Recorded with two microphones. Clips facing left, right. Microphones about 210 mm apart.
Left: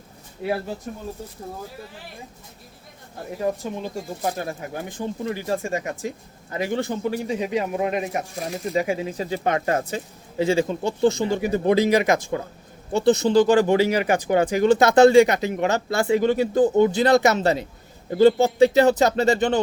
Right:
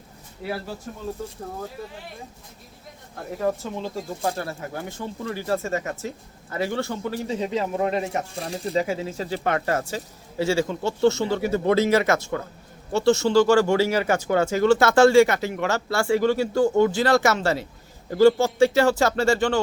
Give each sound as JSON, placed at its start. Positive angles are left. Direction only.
{"t": 0.4, "sound": "speech", "side_deg": 20}
{"t": 3.3, "sound": "speech", "side_deg": 15}
{"t": 8.4, "sound": "speech", "side_deg": -30}
{"t": 8.7, "sound": "speech", "side_deg": 15}